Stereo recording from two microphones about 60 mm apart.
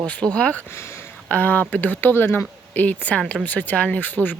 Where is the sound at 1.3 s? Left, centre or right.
Left.